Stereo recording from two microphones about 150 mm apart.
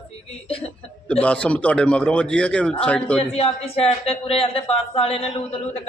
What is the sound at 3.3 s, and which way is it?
A woman's voice, 45° left (ahead or behind).